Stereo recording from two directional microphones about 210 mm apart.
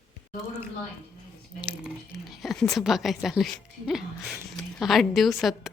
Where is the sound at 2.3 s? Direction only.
Centre (ahead or behind).